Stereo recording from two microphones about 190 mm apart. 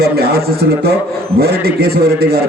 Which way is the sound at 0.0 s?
55° right (ahead or behind).